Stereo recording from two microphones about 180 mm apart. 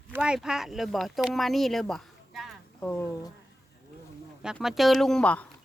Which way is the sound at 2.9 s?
15° left (ahead or behind).